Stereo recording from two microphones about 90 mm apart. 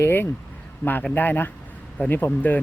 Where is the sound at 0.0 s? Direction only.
25° left (ahead or behind).